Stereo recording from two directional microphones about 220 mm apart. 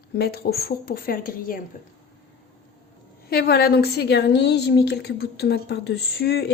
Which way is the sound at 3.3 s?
45° left (ahead or behind).